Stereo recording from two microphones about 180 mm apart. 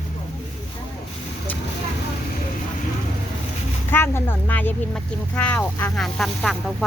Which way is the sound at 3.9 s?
10° left (ahead or behind).